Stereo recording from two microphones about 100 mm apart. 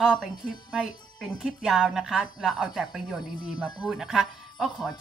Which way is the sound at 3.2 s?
50° left (ahead or behind).